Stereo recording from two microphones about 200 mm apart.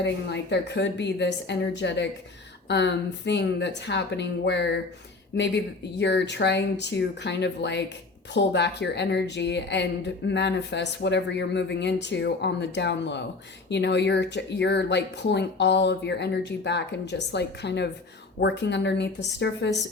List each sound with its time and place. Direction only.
0.0 s a woman's voice: 60° left (ahead or behind)